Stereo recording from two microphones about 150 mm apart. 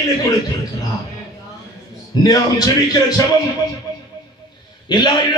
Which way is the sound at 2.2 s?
25° left (ahead or behind).